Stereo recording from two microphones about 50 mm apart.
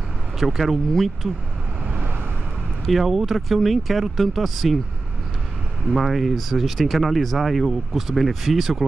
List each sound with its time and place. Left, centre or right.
0.4 s speech: centre
2.9 s speech: centre
5.9 s speech: centre